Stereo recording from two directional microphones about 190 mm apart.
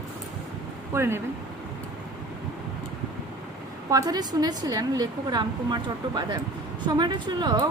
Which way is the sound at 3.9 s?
20° right (ahead or behind).